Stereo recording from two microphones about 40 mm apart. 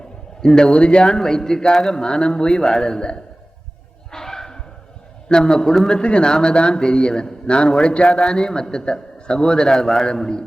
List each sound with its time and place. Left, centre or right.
0.4 s a man's voice: centre
4.1 s bow-wow: centre
5.3 s a man's voice: centre